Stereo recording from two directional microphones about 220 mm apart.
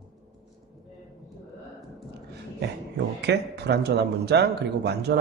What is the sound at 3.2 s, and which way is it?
A man's voice, 50° right (ahead or behind).